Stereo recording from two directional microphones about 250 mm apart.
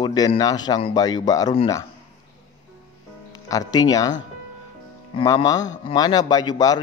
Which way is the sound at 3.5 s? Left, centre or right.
Centre.